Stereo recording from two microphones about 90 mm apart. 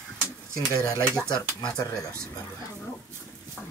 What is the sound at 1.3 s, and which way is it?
Speech, 55° left (ahead or behind).